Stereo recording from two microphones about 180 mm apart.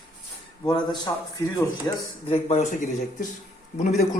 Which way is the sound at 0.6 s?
25° left (ahead or behind).